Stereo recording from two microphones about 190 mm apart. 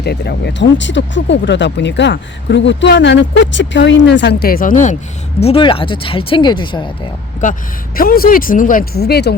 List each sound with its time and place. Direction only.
0.0 s speech: 60° left (ahead or behind); by 4.9 s 40° left (ahead or behind)
5.4 s speech: 30° left (ahead or behind)
7.4 s speech: 40° left (ahead or behind); by 9.3 s 55° left (ahead or behind)